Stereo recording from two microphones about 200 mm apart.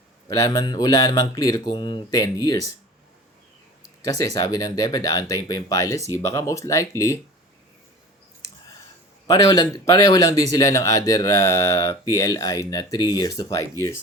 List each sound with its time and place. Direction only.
0.3 s speech: 20° left (ahead or behind)
4.0 s speech: 15° left (ahead or behind)
9.2 s speech: 15° left (ahead or behind)